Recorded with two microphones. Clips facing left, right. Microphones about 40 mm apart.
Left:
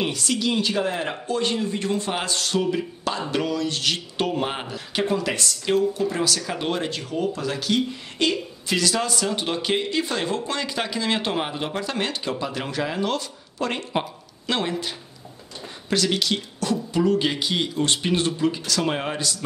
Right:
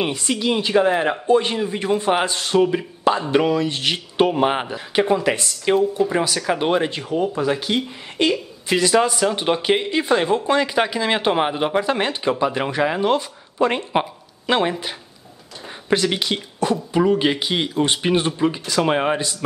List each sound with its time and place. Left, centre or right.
0.0 s speech: right